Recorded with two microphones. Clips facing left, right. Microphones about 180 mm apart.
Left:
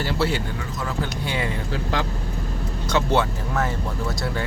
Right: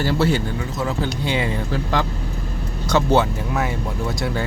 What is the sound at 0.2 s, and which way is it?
Speech, 45° right (ahead or behind).